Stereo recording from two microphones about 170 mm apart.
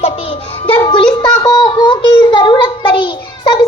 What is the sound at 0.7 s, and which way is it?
Music, 30° left (ahead or behind).